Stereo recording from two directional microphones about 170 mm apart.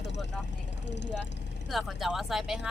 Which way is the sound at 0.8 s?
90° left.